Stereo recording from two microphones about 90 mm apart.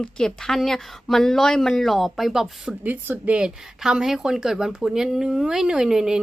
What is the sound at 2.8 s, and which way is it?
Speech, 20° right (ahead or behind).